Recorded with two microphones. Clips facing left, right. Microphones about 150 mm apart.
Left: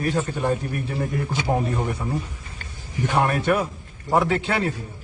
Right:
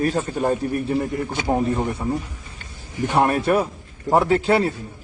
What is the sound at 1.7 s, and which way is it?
Speech, 25° right (ahead or behind).